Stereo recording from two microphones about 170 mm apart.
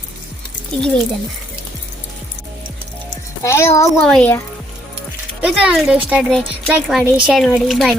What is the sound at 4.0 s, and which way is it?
Speech, 5° left (ahead or behind).